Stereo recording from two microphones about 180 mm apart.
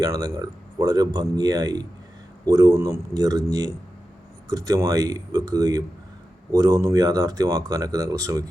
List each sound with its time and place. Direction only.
0.0 s speech: 20° right (ahead or behind)